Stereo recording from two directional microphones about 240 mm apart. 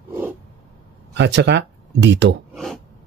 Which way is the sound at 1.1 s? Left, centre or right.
Right.